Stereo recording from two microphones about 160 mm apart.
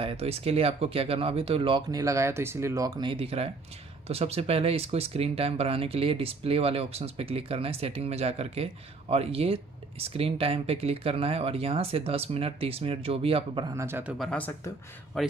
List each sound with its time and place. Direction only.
0.0 s speech: 35° right (ahead or behind)
13.7 s a man's voice: 15° right (ahead or behind)
14.1 s a man's voice: 5° left (ahead or behind)